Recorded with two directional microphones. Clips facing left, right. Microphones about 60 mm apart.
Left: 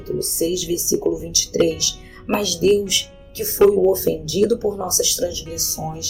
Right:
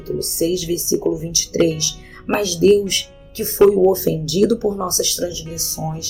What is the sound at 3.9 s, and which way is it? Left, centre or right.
Speech, right.